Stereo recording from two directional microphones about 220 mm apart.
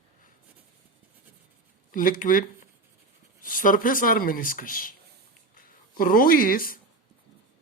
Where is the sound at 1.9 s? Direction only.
40° left (ahead or behind).